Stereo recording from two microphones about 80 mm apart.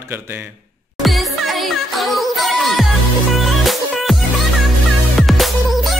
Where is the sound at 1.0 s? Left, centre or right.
Centre.